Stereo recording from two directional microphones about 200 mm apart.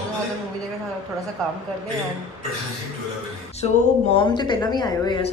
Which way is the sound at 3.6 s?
25° left (ahead or behind).